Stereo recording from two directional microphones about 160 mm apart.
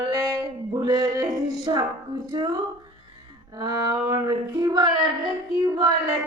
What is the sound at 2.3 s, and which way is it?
Music, 20° right (ahead or behind).